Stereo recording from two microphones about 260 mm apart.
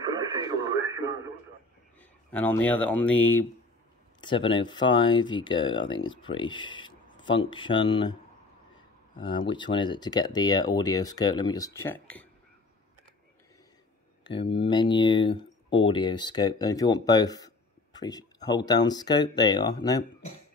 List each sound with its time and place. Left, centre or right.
0.0 s radio: centre
2.0 s speech: centre
4.2 s speech: centre
14.2 s speech: centre
17.9 s a sound: centre
18.7 s speech: centre